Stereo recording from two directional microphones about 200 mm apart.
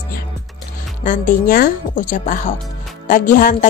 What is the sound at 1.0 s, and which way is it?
A woman's voice, 40° left (ahead or behind).